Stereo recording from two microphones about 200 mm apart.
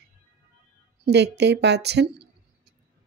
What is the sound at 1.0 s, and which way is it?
Speech, 55° right (ahead or behind).